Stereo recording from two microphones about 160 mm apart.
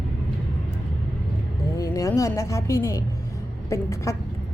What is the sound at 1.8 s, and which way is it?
A woman's voice, 20° left (ahead or behind).